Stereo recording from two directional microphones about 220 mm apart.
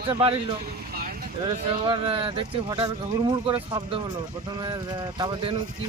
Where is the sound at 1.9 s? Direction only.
25° right (ahead or behind).